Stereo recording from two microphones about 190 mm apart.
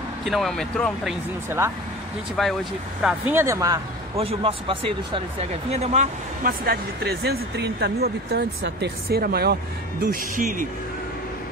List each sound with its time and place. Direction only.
0.2 s speech: centre (ahead or behind)
2.4 s speech: centre (ahead or behind); by 3.8 s 15° right (ahead or behind)
4.2 s speech: 30° right (ahead or behind)
6.4 s speech: 55° right (ahead or behind)